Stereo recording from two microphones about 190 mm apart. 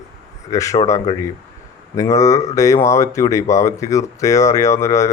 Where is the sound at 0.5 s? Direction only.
15° left (ahead or behind).